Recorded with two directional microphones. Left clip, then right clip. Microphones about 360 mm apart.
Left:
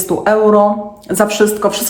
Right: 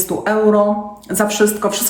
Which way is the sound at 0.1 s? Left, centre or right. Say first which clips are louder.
Left 4 dB; centre.